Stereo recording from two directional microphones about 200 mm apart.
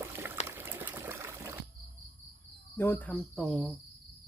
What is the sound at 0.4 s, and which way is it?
Water, 10° right (ahead or behind).